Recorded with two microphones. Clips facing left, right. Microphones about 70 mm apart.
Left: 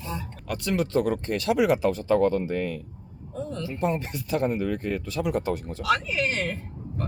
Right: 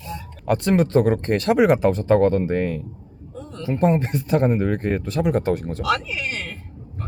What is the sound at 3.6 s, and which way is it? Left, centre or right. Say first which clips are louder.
Speech: right 9 dB; right.